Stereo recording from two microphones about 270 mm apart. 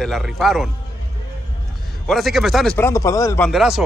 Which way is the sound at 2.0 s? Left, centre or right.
Centre.